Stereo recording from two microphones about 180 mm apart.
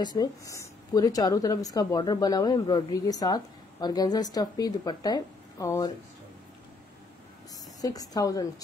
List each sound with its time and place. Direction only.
0.0 s speech: 20° left (ahead or behind)
7.8 s speech: 20° left (ahead or behind)